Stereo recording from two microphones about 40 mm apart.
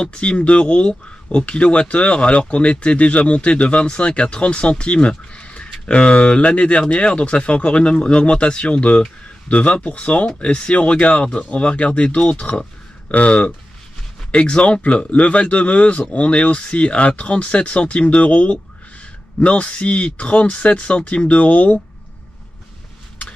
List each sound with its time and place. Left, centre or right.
0.0 s speech: left